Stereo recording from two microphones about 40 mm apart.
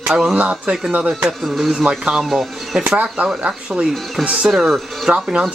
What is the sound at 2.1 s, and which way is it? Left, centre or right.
Speech, centre.